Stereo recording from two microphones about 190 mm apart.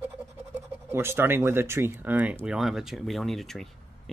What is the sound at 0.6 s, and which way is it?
Speech, 10° right (ahead or behind).